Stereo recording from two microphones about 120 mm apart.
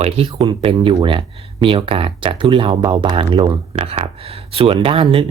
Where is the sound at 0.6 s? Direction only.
50° right (ahead or behind).